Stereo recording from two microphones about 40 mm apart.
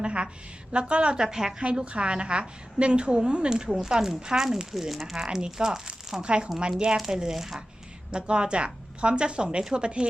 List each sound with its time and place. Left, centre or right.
0.0 s a sound: right
0.7 s speech: right
1.2 s speech: centre
1.6 s speech: right
3.8 s speech: centre
5.1 s speech: centre
6.1 s speech: right; by 7.6 s centre
8.1 s speech: right